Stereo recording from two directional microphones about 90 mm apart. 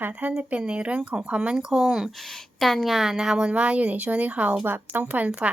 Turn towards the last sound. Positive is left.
turn(degrees=-15)  # may be behind; listen again after turning